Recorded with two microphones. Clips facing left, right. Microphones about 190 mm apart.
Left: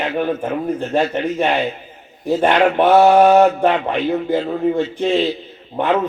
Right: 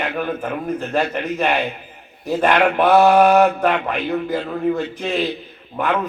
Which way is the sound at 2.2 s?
25° left (ahead or behind).